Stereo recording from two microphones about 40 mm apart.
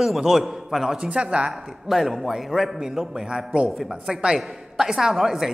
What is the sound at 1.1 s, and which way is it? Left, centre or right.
Speech, right.